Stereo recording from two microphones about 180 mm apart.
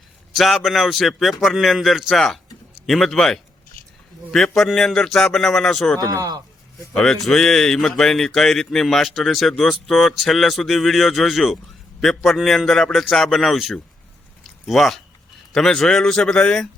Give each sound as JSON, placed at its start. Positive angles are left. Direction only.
{"t": 0.3, "sound": "speech", "side_deg": 0}
{"t": 3.8, "sound": "a sound", "side_deg": 50}
{"t": 4.3, "sound": "speech", "side_deg": 0}
{"t": 6.0, "sound": "a man's voice", "side_deg": -20}
{"t": 6.9, "sound": "speech", "side_deg": 0}
{"t": 14.4, "sound": "a sound", "side_deg": 0}
{"t": 15.5, "sound": "speech", "side_deg": 0}